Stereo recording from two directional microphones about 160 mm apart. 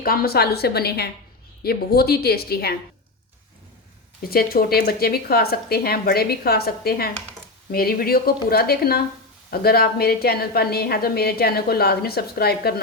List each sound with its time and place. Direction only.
0.0 s a woman's voice: 70° left (ahead or behind)
4.2 s a woman's voice: 70° left (ahead or behind)